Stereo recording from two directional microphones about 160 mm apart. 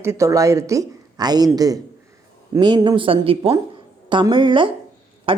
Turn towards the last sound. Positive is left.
turn(degrees=-35)  # may be behind; listen again after turning